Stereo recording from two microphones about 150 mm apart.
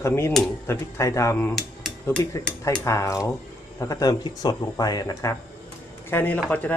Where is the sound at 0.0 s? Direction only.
15° left (ahead or behind).